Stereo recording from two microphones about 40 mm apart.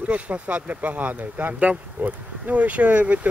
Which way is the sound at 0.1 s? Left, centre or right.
Right.